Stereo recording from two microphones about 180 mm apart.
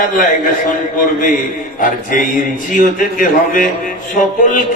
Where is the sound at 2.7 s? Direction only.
45° left (ahead or behind).